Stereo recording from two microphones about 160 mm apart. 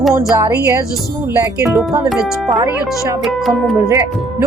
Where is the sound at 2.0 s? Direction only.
Centre (ahead or behind).